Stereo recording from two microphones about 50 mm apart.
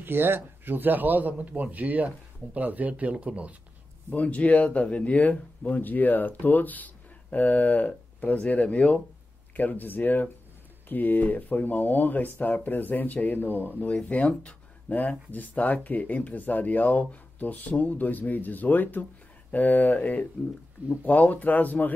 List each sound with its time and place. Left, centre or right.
0.0 s a man's voice: right
4.1 s speech: left
9.6 s speech: left